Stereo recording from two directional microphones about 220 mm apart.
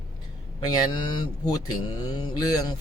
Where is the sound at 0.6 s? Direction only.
15° left (ahead or behind).